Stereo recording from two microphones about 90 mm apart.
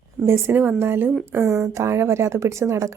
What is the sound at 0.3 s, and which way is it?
A woman's voice, 25° right (ahead or behind).